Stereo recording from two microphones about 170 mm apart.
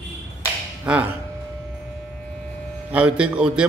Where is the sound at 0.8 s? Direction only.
10° right (ahead or behind).